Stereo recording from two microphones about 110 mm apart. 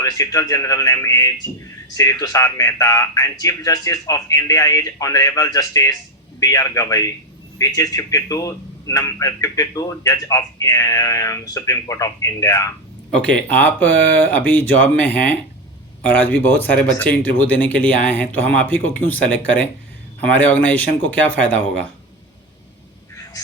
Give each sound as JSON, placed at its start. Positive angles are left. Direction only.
{"t": 0.0, "sound": "a man's voice", "side_deg": 30}
{"t": 13.1, "sound": "speech", "side_deg": 10}